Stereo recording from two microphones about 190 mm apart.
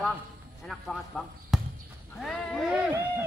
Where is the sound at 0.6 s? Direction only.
Centre (ahead or behind).